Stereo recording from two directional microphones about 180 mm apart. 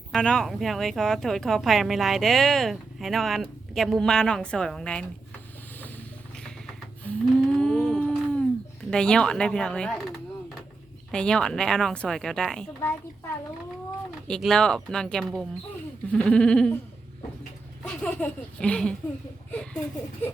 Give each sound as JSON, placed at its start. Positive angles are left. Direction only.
{"t": 0.1, "sound": "a woman's voice", "side_deg": 5}
{"t": 7.0, "sound": "cattle", "side_deg": 5}
{"t": 8.9, "sound": "a woman's voice", "side_deg": 5}
{"t": 11.1, "sound": "a woman's voice", "side_deg": 5}
{"t": 14.3, "sound": "a woman's voice", "side_deg": 5}
{"t": 17.8, "sound": "a woman's voice", "side_deg": 10}